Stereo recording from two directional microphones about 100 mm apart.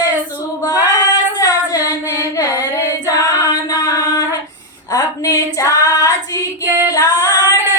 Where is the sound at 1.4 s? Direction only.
35° left (ahead or behind).